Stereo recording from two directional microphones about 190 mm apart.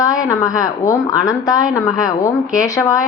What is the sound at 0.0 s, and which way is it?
A woman's voice, 20° left (ahead or behind).